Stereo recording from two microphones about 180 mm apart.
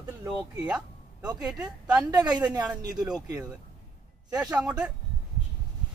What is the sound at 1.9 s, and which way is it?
Speech, 20° right (ahead or behind).